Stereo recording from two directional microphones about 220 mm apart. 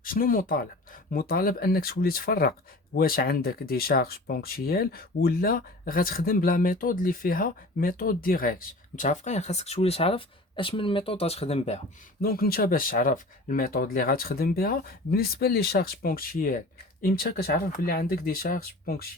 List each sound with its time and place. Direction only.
0.0 s speech: 40° left (ahead or behind)
12.2 s speech: 45° left (ahead or behind)